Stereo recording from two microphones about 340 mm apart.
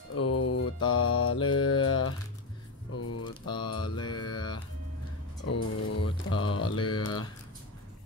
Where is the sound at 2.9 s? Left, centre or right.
Left.